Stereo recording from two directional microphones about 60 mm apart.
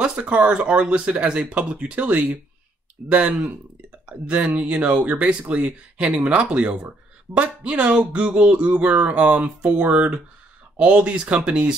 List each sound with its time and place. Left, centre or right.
0.0 s speech: centre